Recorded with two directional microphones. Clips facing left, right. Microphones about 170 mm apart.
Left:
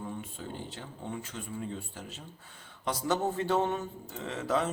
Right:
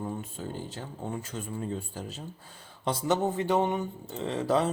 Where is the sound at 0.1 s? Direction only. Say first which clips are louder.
Right 4 dB; 40° right (ahead or behind).